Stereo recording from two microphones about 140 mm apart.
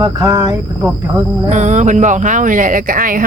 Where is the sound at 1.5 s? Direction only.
60° right (ahead or behind); by 3.2 s 75° right (ahead or behind).